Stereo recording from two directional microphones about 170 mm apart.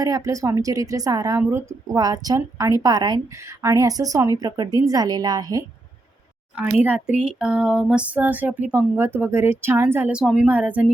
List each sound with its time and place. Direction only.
0.0 s a woman's voice: 20° right (ahead or behind)
6.8 s a sound: 5° right (ahead or behind)
8.7 s speech: 15° right (ahead or behind)